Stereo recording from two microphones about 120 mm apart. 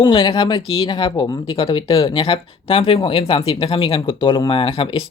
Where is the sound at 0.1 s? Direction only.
45° left (ahead or behind).